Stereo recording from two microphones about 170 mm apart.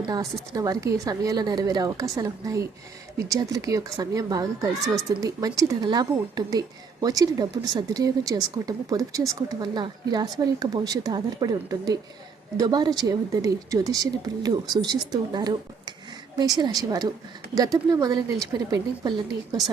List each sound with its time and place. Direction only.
0.5 s a woman's voice: 20° right (ahead or behind)